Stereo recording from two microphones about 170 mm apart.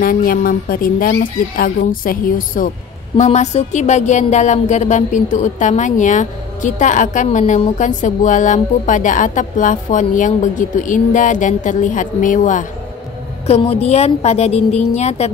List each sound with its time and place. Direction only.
0.0 s a woman's voice: 55° left (ahead or behind)
3.2 s speech: 40° left (ahead or behind)
13.5 s a woman's voice: 35° left (ahead or behind)